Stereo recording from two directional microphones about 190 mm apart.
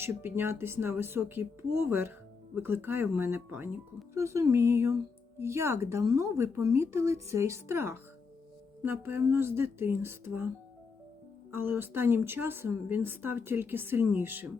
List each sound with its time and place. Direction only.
0.0 s a woman's voice: 10° right (ahead or behind)
11.5 s a woman's voice: 10° right (ahead or behind)